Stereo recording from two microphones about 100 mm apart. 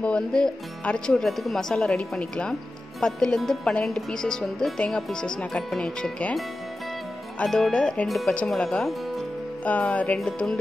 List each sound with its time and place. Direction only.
0.0 s speech: 10° left (ahead or behind)
7.3 s speech: 5° left (ahead or behind)
8.6 s music: centre (ahead or behind)
9.7 s speech: 15° left (ahead or behind)
10.1 s music: 5° left (ahead or behind)